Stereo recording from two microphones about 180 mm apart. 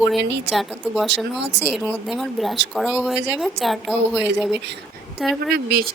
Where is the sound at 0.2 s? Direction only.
75° right (ahead or behind).